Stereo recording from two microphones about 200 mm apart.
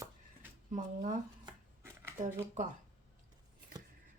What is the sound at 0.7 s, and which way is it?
Speech, 40° right (ahead or behind).